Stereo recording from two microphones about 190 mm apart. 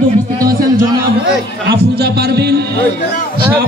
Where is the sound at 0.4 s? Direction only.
50° right (ahead or behind).